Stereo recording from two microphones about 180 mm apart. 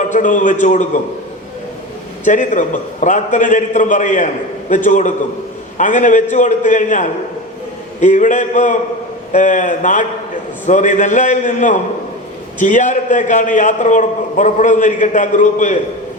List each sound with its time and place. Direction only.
0.0 s a man's voice: 45° left (ahead or behind)
2.2 s a man's voice: 45° left (ahead or behind)